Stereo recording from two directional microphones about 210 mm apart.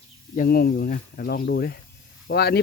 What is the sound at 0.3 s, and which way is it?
Speech, 45° left (ahead or behind).